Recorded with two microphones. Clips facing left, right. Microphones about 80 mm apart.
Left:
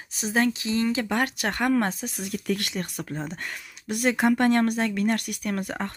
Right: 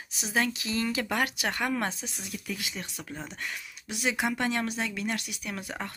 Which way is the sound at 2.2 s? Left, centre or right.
Left.